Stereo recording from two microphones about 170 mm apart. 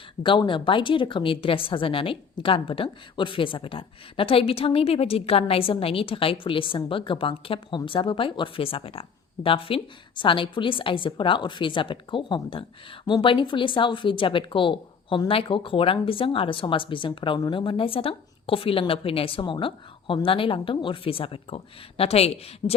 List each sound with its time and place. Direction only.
0.2 s speech: 30° left (ahead or behind)